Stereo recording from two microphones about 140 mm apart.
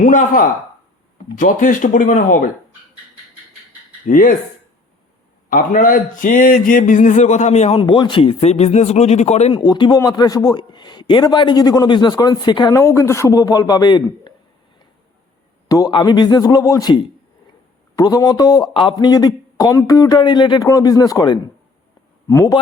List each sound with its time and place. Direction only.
0.0 s speech: 65° left (ahead or behind)
4.0 s speech: 75° left (ahead or behind)
5.5 s speech: 75° left (ahead or behind); by 7.8 s 55° left (ahead or behind)
7.8 s speech: 35° left (ahead or behind); by 9.5 s 55° left (ahead or behind)
9.5 s a man's voice: 30° left (ahead or behind)
12.8 s a man's voice: 20° left (ahead or behind)
15.7 s a man's voice: 30° left (ahead or behind)